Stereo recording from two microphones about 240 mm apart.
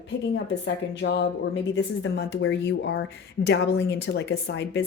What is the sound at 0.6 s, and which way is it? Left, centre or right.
A woman's voice, left.